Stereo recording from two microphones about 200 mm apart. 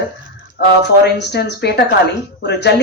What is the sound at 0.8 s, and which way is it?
Speech, 55° left (ahead or behind).